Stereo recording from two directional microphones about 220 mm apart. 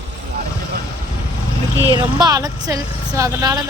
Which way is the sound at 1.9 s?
15° right (ahead or behind).